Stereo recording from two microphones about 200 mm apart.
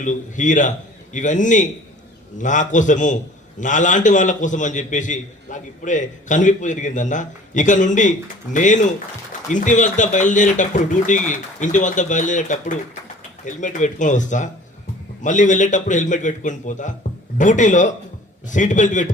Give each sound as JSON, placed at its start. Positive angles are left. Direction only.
{"t": 0.0, "sound": "a man's voice", "side_deg": 40}